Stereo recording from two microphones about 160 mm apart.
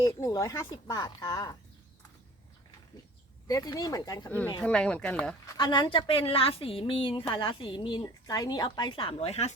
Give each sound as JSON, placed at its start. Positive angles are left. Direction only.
{"t": 0.0, "sound": "a woman's voice", "side_deg": 20}
{"t": 3.4, "sound": "a woman's voice", "side_deg": 25}
{"t": 4.6, "sound": "speech", "side_deg": 5}
{"t": 5.5, "sound": "a woman's voice", "side_deg": 30}